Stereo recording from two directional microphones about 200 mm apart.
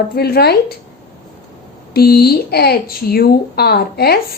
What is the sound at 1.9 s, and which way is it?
A woman's voice, 50° left (ahead or behind).